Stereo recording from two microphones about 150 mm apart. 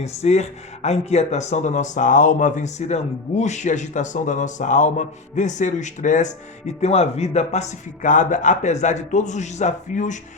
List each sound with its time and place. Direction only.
0.0 s speech: 50° left (ahead or behind)